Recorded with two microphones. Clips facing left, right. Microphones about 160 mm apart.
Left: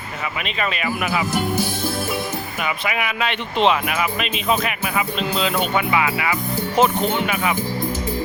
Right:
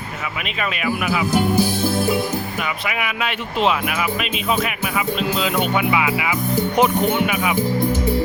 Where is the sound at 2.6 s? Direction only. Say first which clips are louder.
Left 1 dB; centre (ahead or behind).